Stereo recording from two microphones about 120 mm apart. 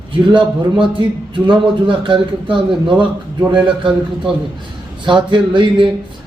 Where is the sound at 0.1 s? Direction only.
45° right (ahead or behind).